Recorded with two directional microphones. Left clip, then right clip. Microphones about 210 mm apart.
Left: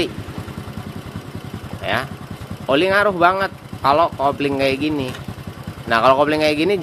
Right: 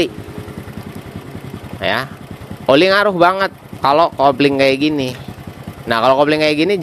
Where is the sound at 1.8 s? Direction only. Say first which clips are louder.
Right 4 dB; 30° right (ahead or behind).